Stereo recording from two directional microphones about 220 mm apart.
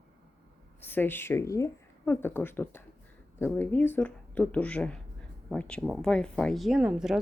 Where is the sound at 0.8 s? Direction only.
10° left (ahead or behind).